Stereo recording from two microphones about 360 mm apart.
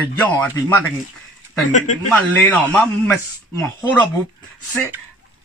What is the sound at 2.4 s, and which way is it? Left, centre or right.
Speech, centre.